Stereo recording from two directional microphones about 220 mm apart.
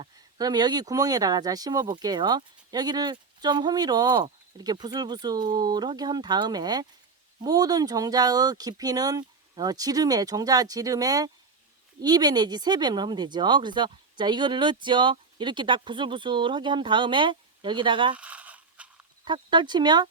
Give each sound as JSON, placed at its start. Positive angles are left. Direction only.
{"t": 0.0, "sound": "speech", "side_deg": -20}
{"t": 18.2, "sound": "a sound", "side_deg": -5}
{"t": 19.2, "sound": "speech", "side_deg": -20}